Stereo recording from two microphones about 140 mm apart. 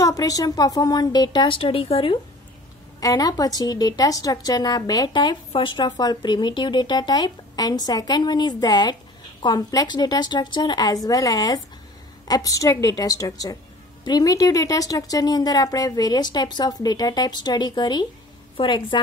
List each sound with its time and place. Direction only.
0.0 s speech: 25° left (ahead or behind); by 2.1 s 40° left (ahead or behind)
3.0 s speech: 25° left (ahead or behind)